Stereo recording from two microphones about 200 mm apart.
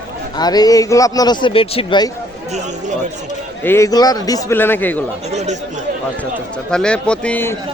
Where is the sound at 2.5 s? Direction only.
35° right (ahead or behind).